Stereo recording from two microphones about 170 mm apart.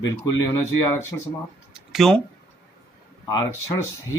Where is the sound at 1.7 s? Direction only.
Centre (ahead or behind).